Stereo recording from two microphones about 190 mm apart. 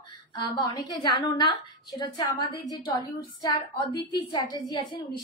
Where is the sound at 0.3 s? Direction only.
25° left (ahead or behind).